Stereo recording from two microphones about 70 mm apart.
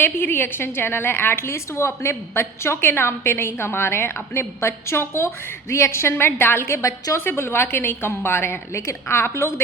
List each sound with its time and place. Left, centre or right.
0.0 s a woman's voice: left